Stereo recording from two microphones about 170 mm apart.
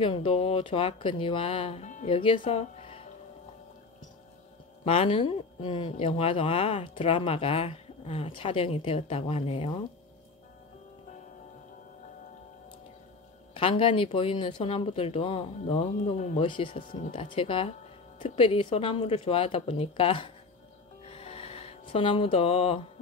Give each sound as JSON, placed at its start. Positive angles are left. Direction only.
{"t": 0.0, "sound": "speech", "side_deg": 30}
{"t": 2.0, "sound": "speech", "side_deg": 30}
{"t": 4.8, "sound": "speech", "side_deg": 35}
{"t": 13.6, "sound": "speech", "side_deg": 30}
{"t": 16.4, "sound": "speech", "side_deg": 30}
{"t": 16.8, "sound": "speech", "side_deg": 55}
{"t": 17.1, "sound": "speech", "side_deg": 30}
{"t": 21.0, "sound": "music", "side_deg": 35}